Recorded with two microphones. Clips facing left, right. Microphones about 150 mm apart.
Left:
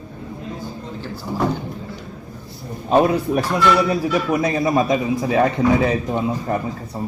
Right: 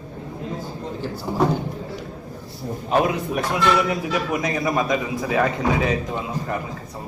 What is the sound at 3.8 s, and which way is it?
A man's voice, 30° left (ahead or behind).